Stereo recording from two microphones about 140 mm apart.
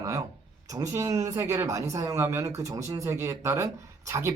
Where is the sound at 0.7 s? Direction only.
20° right (ahead or behind).